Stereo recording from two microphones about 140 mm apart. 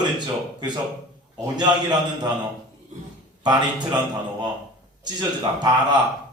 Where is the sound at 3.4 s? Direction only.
30° right (ahead or behind).